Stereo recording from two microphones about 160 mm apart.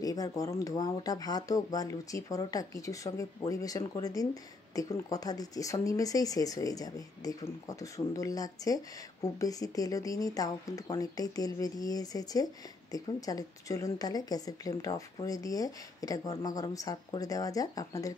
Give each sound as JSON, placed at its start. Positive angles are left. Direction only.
{"t": 0.0, "sound": "speech", "side_deg": 20}